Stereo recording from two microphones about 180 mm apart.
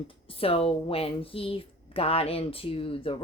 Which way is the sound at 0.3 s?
30° left (ahead or behind).